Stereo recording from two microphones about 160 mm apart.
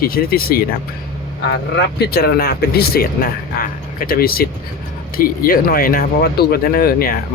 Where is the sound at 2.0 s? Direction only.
75° left (ahead or behind).